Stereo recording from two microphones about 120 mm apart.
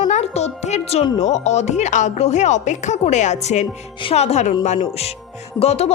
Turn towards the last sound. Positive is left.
turn(degrees=60)  # may be behind; listen again after turning